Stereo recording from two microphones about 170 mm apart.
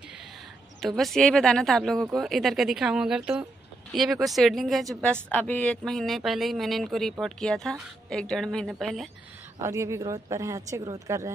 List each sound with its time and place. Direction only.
0.7 s speech: centre (ahead or behind)
9.6 s speech: 15° right (ahead or behind)